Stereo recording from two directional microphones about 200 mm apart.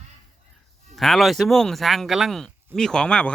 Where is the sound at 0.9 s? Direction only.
Centre (ahead or behind).